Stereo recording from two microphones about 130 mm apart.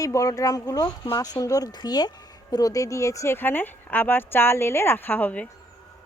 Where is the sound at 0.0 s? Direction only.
25° left (ahead or behind).